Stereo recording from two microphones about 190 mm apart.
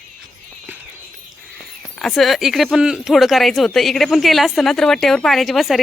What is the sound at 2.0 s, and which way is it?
Speech, centre (ahead or behind).